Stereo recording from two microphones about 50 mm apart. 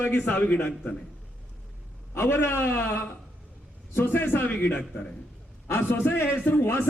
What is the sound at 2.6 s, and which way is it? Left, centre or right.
A man's voice, left.